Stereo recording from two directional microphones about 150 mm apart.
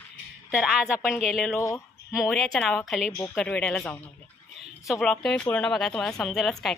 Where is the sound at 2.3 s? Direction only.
Centre (ahead or behind).